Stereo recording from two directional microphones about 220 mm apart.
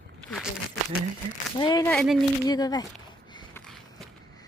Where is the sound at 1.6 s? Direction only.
20° left (ahead or behind).